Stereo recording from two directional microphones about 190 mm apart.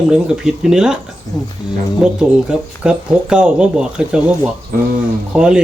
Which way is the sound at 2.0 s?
5° right (ahead or behind).